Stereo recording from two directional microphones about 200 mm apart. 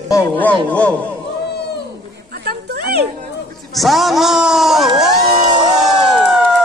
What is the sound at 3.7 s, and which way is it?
A man's voice, centre (ahead or behind).